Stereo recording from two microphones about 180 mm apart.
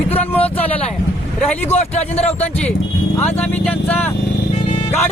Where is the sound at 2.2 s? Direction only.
35° left (ahead or behind).